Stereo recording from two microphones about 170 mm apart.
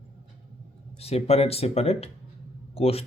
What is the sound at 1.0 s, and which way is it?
A man's voice, 35° left (ahead or behind).